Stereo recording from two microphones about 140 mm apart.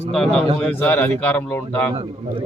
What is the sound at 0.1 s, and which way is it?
Speech, 5° left (ahead or behind).